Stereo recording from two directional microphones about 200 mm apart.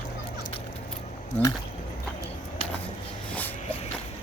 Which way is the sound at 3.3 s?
10° left (ahead or behind).